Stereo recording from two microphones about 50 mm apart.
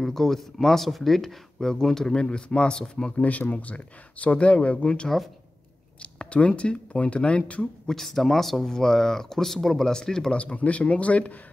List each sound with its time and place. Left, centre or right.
0.0 s speech: centre
3.2 s speech: left
7.8 s speech: centre
10.3 s speech: left